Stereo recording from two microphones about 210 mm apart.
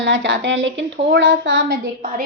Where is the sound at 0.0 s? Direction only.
60° right (ahead or behind).